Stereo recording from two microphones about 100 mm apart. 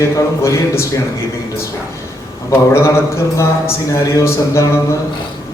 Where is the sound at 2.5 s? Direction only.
25° left (ahead or behind).